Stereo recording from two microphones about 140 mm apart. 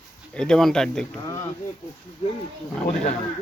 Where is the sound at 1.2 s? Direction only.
25° left (ahead or behind).